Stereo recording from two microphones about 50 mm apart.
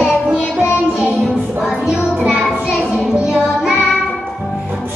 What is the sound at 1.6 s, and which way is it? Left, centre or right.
Music, centre.